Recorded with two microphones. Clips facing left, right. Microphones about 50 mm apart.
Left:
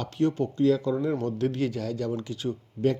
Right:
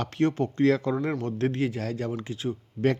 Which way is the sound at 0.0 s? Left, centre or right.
Right.